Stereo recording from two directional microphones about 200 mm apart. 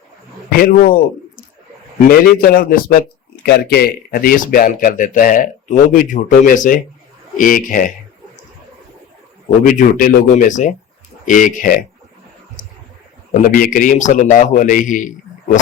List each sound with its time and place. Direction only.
0.5 s a man's voice: 45° left (ahead or behind)
9.6 s speech: 40° left (ahead or behind)
12.6 s a sound: 40° left (ahead or behind)
13.4 s speech: 40° left (ahead or behind)